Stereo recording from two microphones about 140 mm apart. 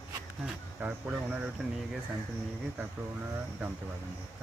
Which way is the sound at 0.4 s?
10° right (ahead or behind).